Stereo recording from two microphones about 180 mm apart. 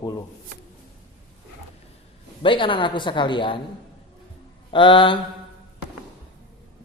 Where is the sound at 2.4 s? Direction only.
30° left (ahead or behind).